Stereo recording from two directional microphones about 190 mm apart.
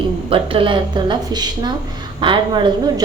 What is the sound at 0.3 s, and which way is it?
Speech, 25° right (ahead or behind).